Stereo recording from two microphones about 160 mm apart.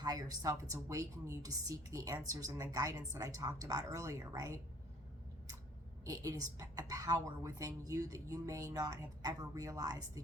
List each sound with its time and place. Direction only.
0.0 s a woman's voice: 25° right (ahead or behind)
6.1 s a woman's voice: 20° right (ahead or behind)